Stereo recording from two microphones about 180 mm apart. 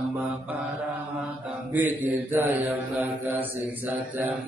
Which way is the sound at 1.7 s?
10° right (ahead or behind).